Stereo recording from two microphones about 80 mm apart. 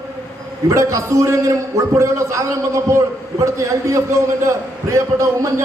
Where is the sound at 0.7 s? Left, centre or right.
Right.